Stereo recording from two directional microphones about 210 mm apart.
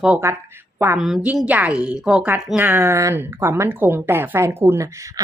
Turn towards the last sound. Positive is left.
turn(degrees=-15)  # may be behind; listen again after turning